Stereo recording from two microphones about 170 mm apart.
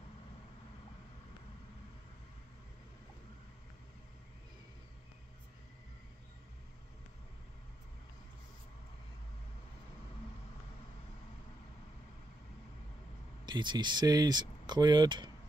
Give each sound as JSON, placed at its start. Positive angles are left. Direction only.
{"t": 13.5, "sound": "speech", "side_deg": -25}